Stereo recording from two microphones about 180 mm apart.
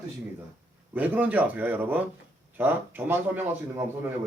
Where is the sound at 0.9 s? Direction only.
10° right (ahead or behind).